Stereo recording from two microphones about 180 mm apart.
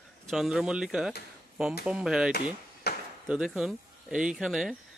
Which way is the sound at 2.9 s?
60° left (ahead or behind).